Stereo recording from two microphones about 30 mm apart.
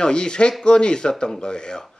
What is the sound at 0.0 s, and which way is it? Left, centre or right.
Speech, left.